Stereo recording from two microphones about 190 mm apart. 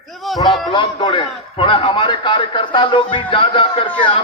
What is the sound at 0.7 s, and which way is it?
A man's voice, 25° left (ahead or behind).